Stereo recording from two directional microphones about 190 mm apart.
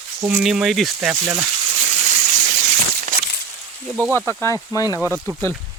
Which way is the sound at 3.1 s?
45° right (ahead or behind).